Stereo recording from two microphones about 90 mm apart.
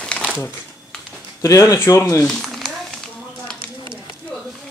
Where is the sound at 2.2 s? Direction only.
5° left (ahead or behind).